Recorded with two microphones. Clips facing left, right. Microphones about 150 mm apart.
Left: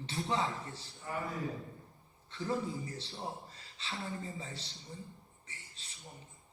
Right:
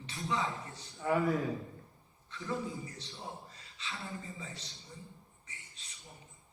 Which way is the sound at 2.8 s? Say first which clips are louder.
Left 3 dB; 30° left (ahead or behind).